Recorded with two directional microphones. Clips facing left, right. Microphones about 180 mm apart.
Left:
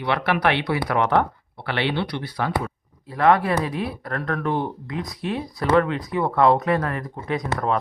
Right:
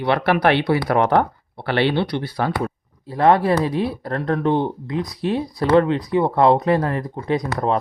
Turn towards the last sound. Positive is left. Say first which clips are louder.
# right 3 dB
turn(degrees=-30)  # may be behind; listen again after turning